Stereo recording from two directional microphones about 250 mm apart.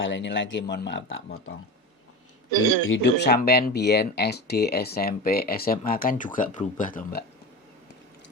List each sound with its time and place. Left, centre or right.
0.0 s speech: left
2.9 s speech: left